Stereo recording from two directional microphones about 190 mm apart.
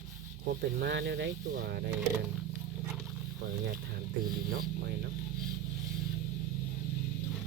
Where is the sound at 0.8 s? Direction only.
60° right (ahead or behind).